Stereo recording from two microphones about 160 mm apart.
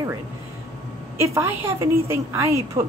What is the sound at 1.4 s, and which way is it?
A woman's voice, 20° right (ahead or behind).